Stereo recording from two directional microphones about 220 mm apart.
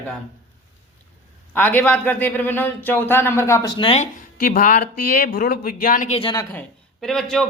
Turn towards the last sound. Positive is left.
turn(degrees=0)  # may be behind; listen again after turning